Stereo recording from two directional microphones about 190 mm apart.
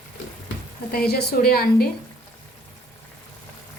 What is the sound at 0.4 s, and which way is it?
Speech, 55° left (ahead or behind).